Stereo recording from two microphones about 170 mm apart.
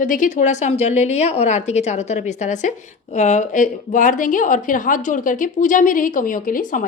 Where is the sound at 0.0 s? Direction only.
50° left (ahead or behind).